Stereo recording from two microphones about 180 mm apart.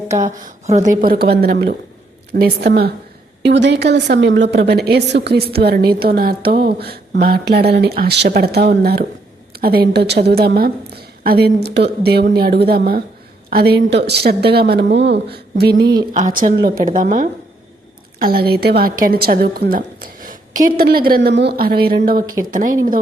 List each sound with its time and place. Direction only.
0.1 s a woman's voice: 40° right (ahead or behind); by 2.9 s 60° right (ahead or behind)
3.4 s a woman's voice: 75° right (ahead or behind)
16.1 s a woman's voice: 45° right (ahead or behind)
18.2 s a woman's voice: 55° right (ahead or behind)
21.2 s a woman's voice: 75° right (ahead or behind); by 22.2 s 55° right (ahead or behind)